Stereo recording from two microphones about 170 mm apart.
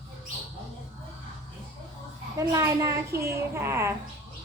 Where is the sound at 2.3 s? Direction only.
15° right (ahead or behind).